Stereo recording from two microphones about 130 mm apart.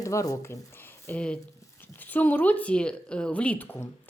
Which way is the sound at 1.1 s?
10° left (ahead or behind).